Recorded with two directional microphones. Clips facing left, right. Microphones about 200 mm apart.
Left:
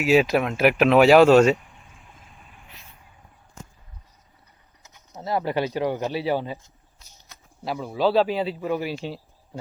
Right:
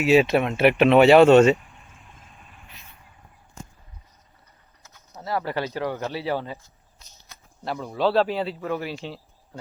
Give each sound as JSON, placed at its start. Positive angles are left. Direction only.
{"t": 0.0, "sound": "speech", "side_deg": 0}
{"t": 4.8, "sound": "speech", "side_deg": 20}
{"t": 8.6, "sound": "speech", "side_deg": 15}